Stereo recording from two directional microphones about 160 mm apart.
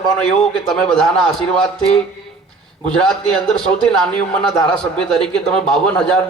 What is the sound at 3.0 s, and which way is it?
A man's voice, 5° left (ahead or behind).